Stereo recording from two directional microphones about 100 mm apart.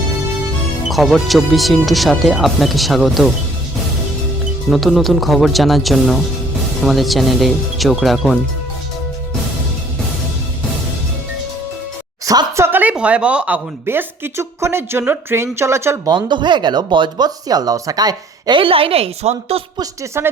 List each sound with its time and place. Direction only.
0.9 s speech: centre (ahead or behind)
4.7 s speech: centre (ahead or behind)
12.2 s a sound: 35° right (ahead or behind)
12.6 s speech: 20° right (ahead or behind)
13.8 s speech: 25° right (ahead or behind)
16.0 s speech: 50° right (ahead or behind)
18.6 s a woman's voice: 70° right (ahead or behind); by 19.6 s 90° right
20.0 s speech: 25° right (ahead or behind)